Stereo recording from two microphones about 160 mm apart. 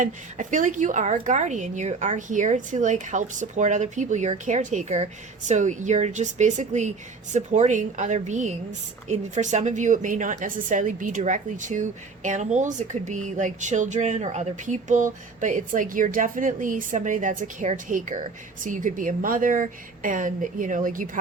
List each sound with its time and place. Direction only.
0.0 s a woman's voice: 55° right (ahead or behind)